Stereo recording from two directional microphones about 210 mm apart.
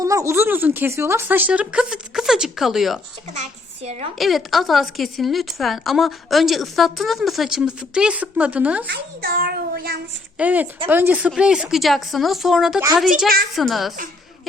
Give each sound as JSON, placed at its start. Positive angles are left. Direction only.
{"t": 0.0, "sound": "speech", "side_deg": -15}
{"t": 3.3, "sound": "a child's voice", "side_deg": -35}
{"t": 4.2, "sound": "a woman's voice", "side_deg": 0}
{"t": 8.9, "sound": "child singing", "side_deg": -45}
{"t": 10.3, "sound": "a woman's voice", "side_deg": -5}
{"t": 13.2, "sound": "child singing", "side_deg": -45}
{"t": 13.6, "sound": "a woman's voice", "side_deg": 0}